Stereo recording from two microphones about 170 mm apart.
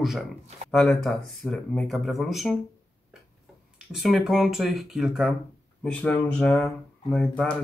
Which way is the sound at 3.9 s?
Centre (ahead or behind).